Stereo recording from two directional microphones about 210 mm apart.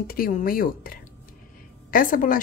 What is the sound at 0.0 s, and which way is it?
A woman's voice, 45° left (ahead or behind).